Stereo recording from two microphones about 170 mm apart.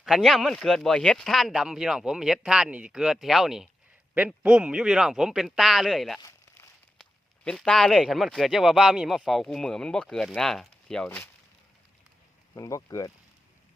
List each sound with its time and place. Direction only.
0.0 s speech: centre (ahead or behind)
12.5 s speech: 20° left (ahead or behind)